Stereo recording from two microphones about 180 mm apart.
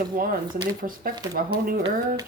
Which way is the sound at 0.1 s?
50° right (ahead or behind).